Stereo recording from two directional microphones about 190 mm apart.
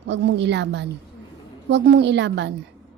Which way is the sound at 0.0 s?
65° right (ahead or behind).